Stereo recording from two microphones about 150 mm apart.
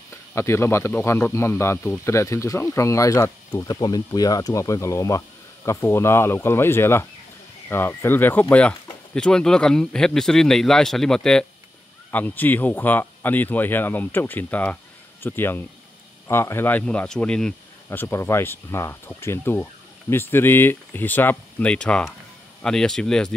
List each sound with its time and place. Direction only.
0.1 s speech: 15° left (ahead or behind)
17.8 s speech: 15° left (ahead or behind)